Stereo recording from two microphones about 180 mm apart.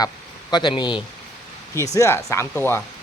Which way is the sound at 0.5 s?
25° left (ahead or behind).